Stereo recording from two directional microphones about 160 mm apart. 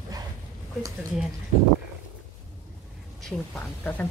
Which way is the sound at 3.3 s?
10° left (ahead or behind).